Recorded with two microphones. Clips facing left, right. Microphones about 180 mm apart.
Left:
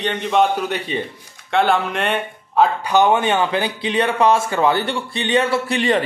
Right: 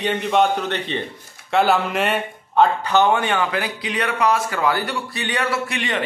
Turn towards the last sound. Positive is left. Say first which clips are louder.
# left 6 dB
turn(degrees=35)  # may be behind; listen again after turning